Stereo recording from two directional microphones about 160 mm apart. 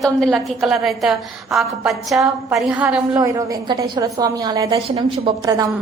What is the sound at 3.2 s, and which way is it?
A woman's voice, 20° right (ahead or behind).